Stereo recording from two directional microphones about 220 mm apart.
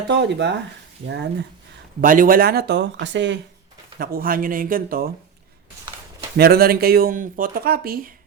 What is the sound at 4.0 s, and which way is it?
Speech, 40° right (ahead or behind).